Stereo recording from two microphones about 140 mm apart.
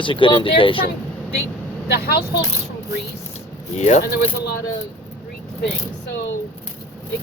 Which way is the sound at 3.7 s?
50° left (ahead or behind).